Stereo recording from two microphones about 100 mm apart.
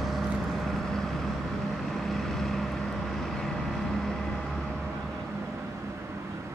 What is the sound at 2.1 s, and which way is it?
Vehicle, centre (ahead or behind).